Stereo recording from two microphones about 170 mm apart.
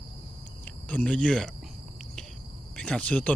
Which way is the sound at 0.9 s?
5° left (ahead or behind).